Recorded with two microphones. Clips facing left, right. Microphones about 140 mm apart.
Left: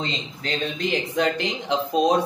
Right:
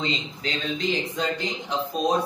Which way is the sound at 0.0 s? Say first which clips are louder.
Right 1 dB; 55° left (ahead or behind).